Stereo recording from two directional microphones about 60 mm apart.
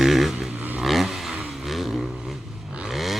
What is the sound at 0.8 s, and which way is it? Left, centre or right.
Vehicle, centre.